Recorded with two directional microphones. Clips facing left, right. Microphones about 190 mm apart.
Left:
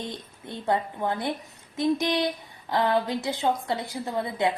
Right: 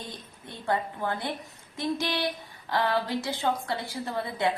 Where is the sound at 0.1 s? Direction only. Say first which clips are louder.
Left 5 dB; 20° left (ahead or behind).